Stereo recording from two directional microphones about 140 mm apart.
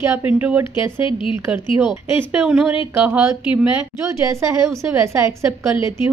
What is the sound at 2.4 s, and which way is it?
Speech, 10° right (ahead or behind).